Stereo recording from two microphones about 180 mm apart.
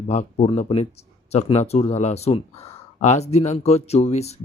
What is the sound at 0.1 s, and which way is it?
A man's voice, 40° left (ahead or behind).